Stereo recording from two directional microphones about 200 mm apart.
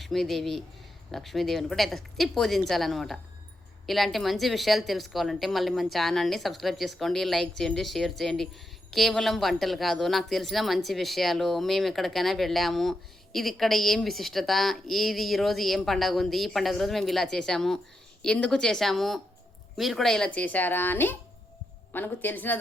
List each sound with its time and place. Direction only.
0.0 s speech: centre (ahead or behind)